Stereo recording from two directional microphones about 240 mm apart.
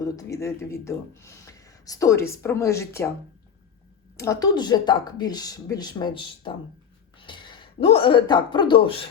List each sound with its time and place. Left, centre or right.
0.0 s speech: centre
4.2 s speech: centre